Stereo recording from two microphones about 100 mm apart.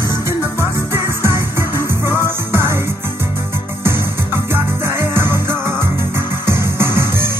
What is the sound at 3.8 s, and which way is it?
Music, 25° right (ahead or behind).